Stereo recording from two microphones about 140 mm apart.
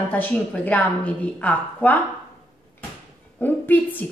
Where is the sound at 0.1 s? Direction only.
10° left (ahead or behind).